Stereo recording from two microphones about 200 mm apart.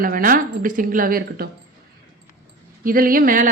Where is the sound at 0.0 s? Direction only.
45° right (ahead or behind).